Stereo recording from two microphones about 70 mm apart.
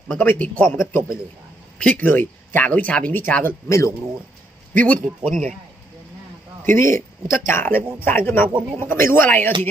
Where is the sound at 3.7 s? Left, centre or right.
Left.